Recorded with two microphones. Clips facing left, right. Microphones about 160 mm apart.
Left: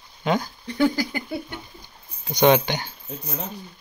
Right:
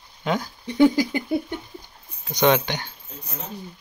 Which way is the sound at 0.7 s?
20° right (ahead or behind).